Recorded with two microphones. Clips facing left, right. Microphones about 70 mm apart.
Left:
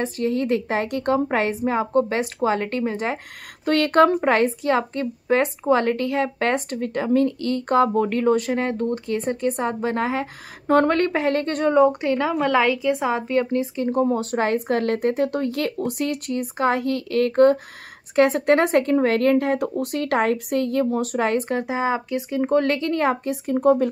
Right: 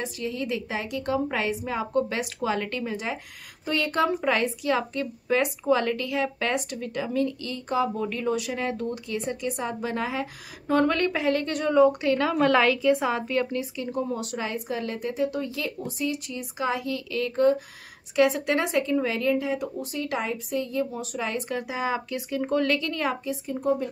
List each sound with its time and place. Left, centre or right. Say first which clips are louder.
0.0 s speech: left 8 dB; left
3.6 s speech: left 8 dB; left
4.2 s speech: left 6 dB; left
12.4 s a woman's voice: left 1 dB; centre; by 23.1 s left
23.2 s speech: left 8 dB; left